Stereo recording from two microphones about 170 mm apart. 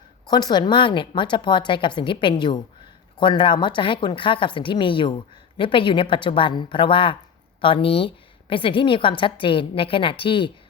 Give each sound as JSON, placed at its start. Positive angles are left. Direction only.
{"t": 0.3, "sound": "a woman's voice", "side_deg": 25}